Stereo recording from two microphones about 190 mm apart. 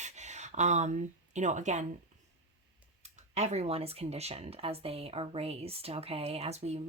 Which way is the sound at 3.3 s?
35° right (ahead or behind).